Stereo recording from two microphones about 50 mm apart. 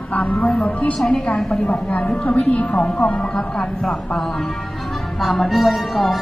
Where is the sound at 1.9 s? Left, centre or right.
Left.